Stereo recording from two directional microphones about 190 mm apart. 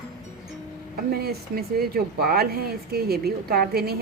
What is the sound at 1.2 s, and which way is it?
Speech, 55° right (ahead or behind).